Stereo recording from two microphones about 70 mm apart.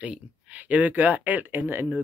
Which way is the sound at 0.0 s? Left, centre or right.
Right.